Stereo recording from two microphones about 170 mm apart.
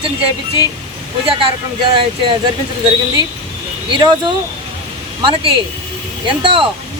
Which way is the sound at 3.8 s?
25° right (ahead or behind).